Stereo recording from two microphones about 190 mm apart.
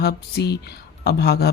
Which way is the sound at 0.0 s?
60° left (ahead or behind).